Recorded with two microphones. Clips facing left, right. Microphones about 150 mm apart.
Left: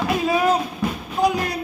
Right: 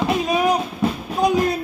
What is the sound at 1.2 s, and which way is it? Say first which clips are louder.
Music: right 2 dB; 20° right (ahead or behind).